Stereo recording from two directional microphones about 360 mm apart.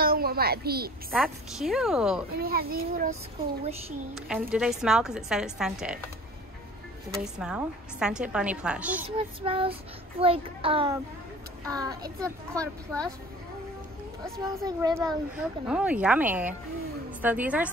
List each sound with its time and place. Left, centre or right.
0.0 s a child's voice: right
1.1 s a woman's voice: centre
2.3 s a child's voice: right
4.1 s a woman's voice: centre
7.3 s a woman's voice: centre
9.1 s child singing: centre
11.7 s a woman's voice: centre
14.2 s child singing: centre
15.0 s a woman's voice: centre